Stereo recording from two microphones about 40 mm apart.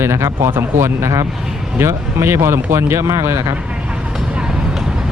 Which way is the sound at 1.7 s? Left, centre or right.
Right.